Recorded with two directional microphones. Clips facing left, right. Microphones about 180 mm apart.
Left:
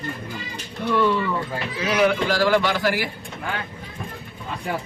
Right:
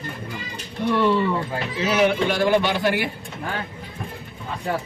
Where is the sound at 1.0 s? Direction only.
25° right (ahead or behind).